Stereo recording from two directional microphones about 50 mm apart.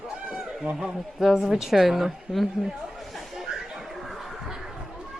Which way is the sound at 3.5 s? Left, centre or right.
Centre.